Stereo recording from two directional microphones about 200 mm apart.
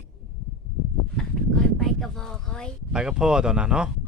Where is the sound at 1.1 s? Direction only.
Centre (ahead or behind).